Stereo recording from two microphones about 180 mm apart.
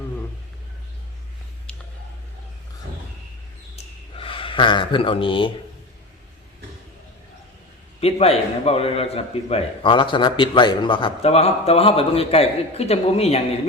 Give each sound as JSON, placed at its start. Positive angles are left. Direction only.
{"t": 1.7, "sound": "a sound", "side_deg": 5}
{"t": 4.2, "sound": "speech", "side_deg": 30}
{"t": 8.0, "sound": "a man's voice", "side_deg": 35}